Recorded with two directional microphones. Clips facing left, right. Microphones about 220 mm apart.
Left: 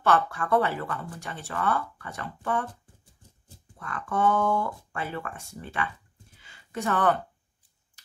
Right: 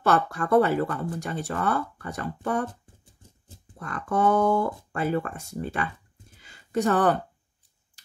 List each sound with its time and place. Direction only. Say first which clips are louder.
0.0 s speech: right 1 dB; 40° right (ahead or behind)
3.7 s speech: right 3 dB; 35° right (ahead or behind)
6.4 s a sound: right 7 dB; 40° right (ahead or behind)